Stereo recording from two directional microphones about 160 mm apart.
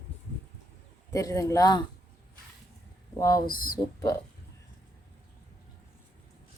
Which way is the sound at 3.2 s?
20° left (ahead or behind).